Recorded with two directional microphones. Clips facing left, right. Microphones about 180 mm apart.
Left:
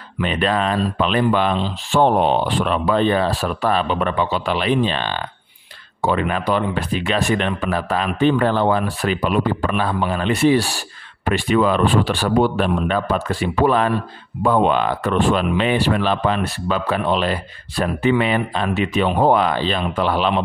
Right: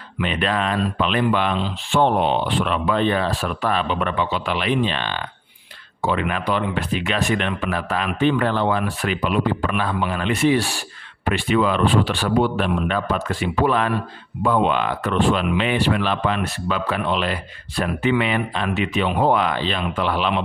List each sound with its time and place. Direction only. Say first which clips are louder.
0.2 s speech: left 3 dB; 35° left (ahead or behind)